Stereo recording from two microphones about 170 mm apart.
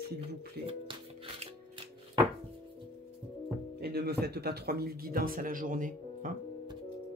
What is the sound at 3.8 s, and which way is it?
Speech, 70° right (ahead or behind).